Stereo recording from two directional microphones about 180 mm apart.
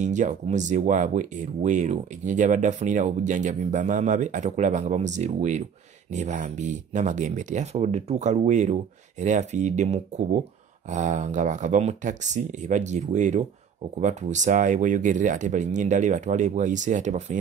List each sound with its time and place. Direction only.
0.0 s speech: 40° right (ahead or behind)